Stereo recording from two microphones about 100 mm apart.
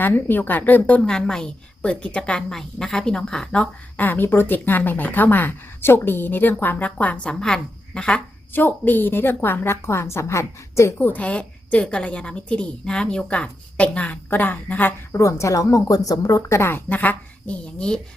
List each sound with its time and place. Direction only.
0.0 s a woman's voice: 20° left (ahead or behind)